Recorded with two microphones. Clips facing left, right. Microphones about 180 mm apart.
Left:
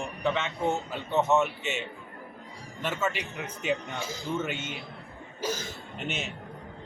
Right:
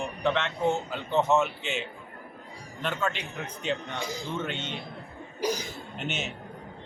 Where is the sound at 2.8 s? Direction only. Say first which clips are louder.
Even; 5° left (ahead or behind).